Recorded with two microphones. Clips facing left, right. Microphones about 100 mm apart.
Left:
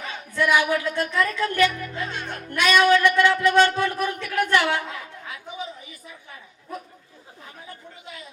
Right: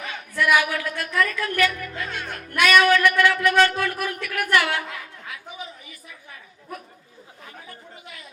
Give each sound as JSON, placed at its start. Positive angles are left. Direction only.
{"t": 0.3, "sound": "speech", "side_deg": 25}